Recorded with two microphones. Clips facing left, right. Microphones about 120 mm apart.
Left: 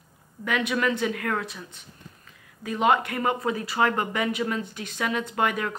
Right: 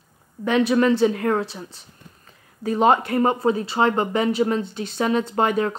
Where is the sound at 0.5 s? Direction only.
30° right (ahead or behind).